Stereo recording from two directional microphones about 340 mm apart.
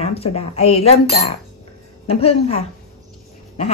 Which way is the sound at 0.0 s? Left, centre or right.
Centre.